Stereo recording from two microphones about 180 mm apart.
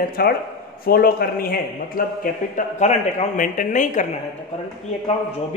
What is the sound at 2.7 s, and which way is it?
A man's voice, 45° left (ahead or behind).